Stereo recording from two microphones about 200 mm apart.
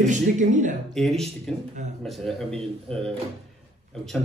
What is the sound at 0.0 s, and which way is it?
Speech, 40° right (ahead or behind).